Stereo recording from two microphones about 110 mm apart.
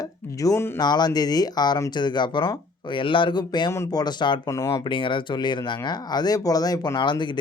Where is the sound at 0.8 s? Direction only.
40° left (ahead or behind).